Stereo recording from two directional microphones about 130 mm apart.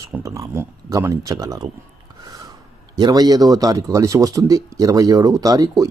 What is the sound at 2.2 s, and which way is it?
Gasp, 30° right (ahead or behind).